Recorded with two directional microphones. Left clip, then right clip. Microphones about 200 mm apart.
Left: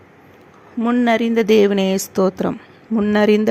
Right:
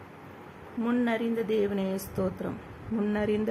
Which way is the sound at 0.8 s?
50° left (ahead or behind).